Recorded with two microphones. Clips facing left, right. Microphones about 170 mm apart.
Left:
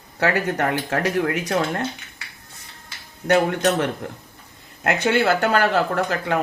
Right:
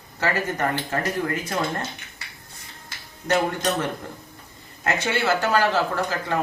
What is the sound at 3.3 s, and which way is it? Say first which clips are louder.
Speech: left 4 dB; 70° left (ahead or behind).